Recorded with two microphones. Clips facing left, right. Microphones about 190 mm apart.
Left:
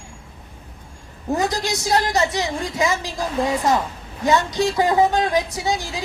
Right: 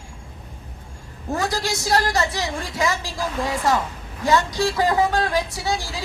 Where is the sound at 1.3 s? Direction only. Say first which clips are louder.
Left 2 dB; 20° left (ahead or behind).